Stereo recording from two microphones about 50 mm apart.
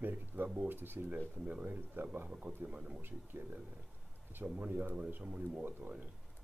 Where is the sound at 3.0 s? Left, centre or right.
Right.